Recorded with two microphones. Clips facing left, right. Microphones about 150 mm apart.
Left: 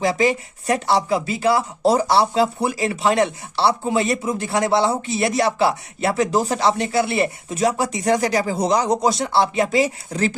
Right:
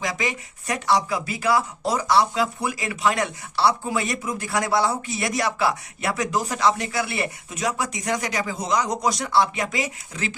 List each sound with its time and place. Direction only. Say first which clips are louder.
0.0 s speech: left 9 dB; 30° left (ahead or behind)